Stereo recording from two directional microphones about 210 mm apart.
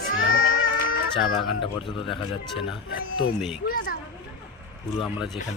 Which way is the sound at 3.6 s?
45° left (ahead or behind).